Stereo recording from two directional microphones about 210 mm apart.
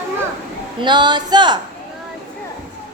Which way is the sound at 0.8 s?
20° right (ahead or behind).